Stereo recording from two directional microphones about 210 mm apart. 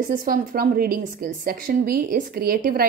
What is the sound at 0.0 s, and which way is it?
A woman's voice, 40° right (ahead or behind).